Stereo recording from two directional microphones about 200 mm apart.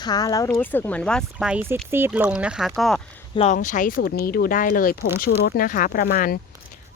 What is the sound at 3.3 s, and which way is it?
Speech, 35° left (ahead or behind).